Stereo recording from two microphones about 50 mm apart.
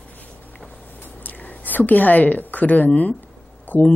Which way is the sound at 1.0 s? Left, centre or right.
Left.